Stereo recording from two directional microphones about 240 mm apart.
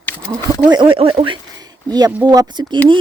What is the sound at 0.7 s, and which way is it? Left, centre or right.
Speech, centre.